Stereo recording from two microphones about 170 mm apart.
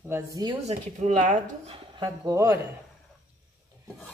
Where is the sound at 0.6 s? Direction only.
45° right (ahead or behind).